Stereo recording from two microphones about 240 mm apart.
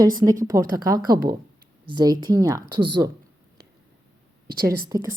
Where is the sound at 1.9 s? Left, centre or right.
Centre.